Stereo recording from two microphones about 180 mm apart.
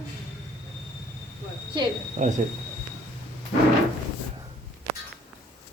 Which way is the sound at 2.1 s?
40° right (ahead or behind).